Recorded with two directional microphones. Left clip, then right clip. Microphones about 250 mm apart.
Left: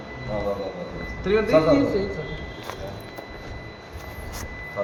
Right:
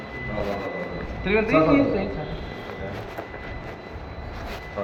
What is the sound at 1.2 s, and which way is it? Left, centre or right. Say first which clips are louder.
Speech: left 1 dB; left.